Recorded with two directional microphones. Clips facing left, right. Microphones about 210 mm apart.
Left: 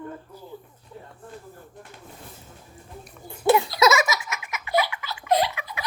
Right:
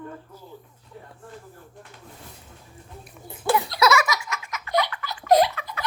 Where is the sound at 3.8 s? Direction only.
25° left (ahead or behind).